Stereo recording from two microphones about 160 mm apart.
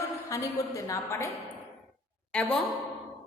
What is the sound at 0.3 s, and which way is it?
Speech, 20° left (ahead or behind).